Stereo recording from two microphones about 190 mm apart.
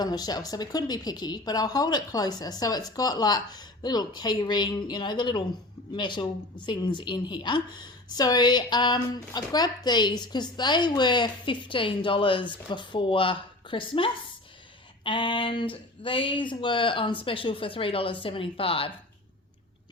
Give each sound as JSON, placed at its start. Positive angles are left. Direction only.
{"t": 0.0, "sound": "speech", "side_deg": 20}